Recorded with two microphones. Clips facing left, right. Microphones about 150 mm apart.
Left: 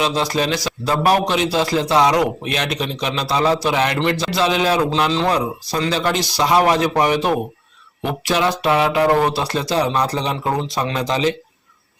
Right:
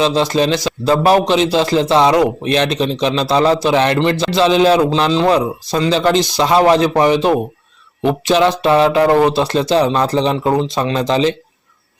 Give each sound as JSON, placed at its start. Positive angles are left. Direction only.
{"t": 0.0, "sound": "a man's voice", "side_deg": -25}